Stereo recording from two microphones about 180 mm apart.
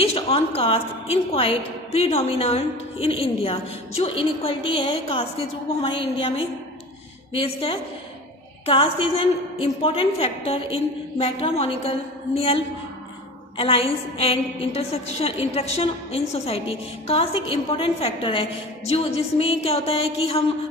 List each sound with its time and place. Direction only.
0.0 s a woman's voice: 35° left (ahead or behind)